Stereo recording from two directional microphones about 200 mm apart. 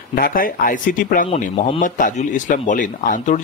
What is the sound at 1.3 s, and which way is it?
Speech, 30° left (ahead or behind).